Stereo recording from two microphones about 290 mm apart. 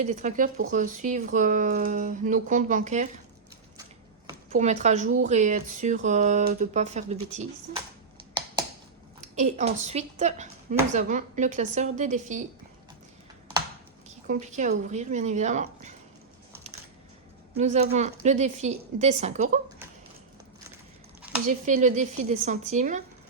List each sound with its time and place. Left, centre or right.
0.0 s speech: right
4.5 s speech: right
8.3 s a sound: centre
9.3 s speech: right
14.3 s speech: right
17.5 s speech: right
21.2 s a sound: centre
21.7 s speech: right